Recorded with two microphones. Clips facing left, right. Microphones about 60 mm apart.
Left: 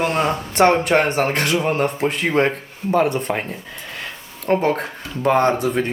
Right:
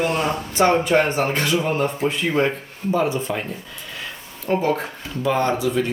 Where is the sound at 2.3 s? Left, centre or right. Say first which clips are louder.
Left 3 dB; left.